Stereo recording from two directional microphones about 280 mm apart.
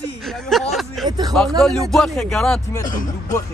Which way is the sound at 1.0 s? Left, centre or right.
Centre.